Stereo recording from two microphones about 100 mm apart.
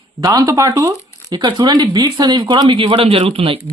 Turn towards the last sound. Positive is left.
turn(degrees=-65)  # may be behind; listen again after turning